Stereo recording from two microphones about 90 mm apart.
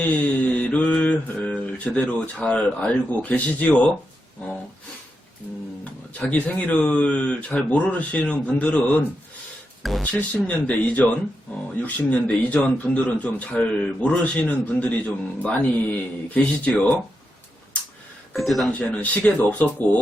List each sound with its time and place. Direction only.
0.0 s mantra: 15° left (ahead or behind)
6.3 s a man's voice: 15° left (ahead or behind)
18.3 s speech: centre (ahead or behind)
18.7 s a man's voice: 15° left (ahead or behind)